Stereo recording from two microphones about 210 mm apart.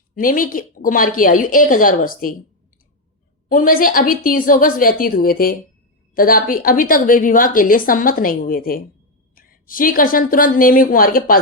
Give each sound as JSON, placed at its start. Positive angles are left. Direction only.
{"t": 0.1, "sound": "a woman's voice", "side_deg": 40}
{"t": 3.5, "sound": "a woman's voice", "side_deg": 40}